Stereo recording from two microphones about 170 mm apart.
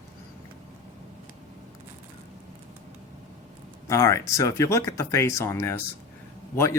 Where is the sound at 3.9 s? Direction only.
15° left (ahead or behind).